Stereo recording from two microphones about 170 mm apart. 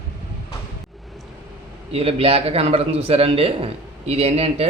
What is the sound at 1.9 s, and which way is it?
A man's voice, 35° right (ahead or behind).